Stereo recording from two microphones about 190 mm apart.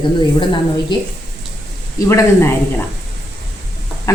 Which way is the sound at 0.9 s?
20° left (ahead or behind).